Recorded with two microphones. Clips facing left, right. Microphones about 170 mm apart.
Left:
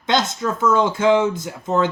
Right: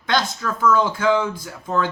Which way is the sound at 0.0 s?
20° left (ahead or behind).